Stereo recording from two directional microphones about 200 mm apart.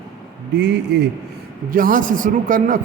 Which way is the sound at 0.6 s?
60° right (ahead or behind).